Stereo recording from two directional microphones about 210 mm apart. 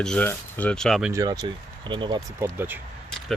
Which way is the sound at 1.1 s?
15° right (ahead or behind).